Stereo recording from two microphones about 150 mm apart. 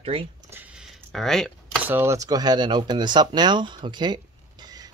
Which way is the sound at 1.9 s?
15° right (ahead or behind).